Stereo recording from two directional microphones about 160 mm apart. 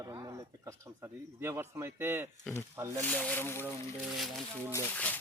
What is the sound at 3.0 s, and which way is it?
Speech, 10° left (ahead or behind).